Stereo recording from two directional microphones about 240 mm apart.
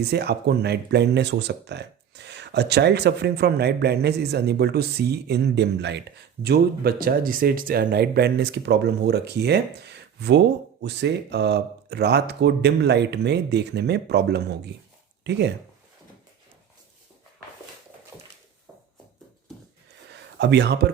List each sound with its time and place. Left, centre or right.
0.1 s speech: right
20.4 s speech: right